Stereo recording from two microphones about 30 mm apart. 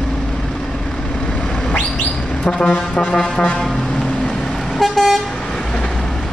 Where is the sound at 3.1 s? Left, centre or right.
Left.